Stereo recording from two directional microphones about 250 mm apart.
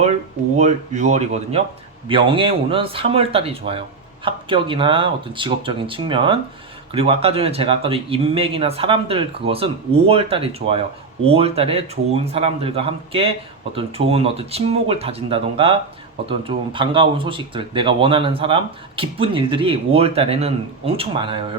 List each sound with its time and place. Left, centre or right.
0.5 s speech: right